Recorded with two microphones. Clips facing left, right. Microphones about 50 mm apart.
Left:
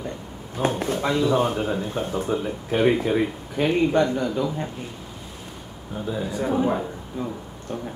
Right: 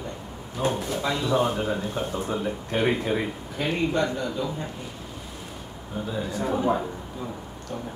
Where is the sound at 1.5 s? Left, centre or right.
Centre.